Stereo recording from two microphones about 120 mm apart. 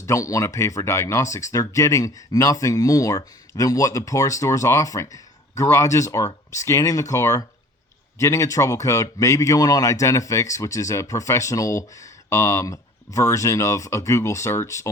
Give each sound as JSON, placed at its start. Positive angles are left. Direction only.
{"t": 0.0, "sound": "speech", "side_deg": 25}